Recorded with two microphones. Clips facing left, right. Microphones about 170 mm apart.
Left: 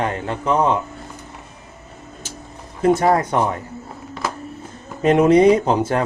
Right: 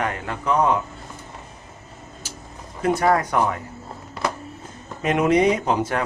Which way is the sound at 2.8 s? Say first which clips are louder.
Left 4 dB; 30° left (ahead or behind).